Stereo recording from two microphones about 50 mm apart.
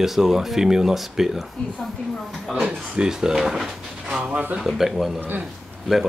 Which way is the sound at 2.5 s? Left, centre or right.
Centre.